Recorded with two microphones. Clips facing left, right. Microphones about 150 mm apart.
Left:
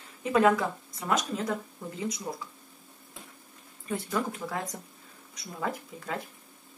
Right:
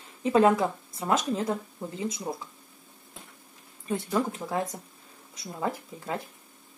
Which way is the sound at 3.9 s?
25° right (ahead or behind).